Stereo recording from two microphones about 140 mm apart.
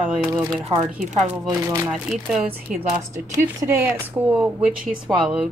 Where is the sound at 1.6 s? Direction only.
20° right (ahead or behind).